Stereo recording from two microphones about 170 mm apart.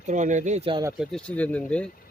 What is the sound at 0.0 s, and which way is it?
Speech, 45° right (ahead or behind).